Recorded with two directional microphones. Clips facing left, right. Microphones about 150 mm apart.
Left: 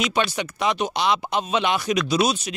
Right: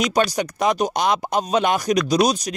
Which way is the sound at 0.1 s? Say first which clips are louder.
Right 4 dB; 45° right (ahead or behind).